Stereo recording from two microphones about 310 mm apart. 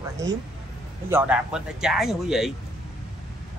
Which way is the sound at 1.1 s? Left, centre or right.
Centre.